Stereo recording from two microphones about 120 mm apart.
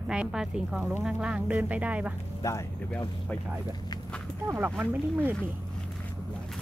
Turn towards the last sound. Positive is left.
turn(degrees=-15)  # may be behind; listen again after turning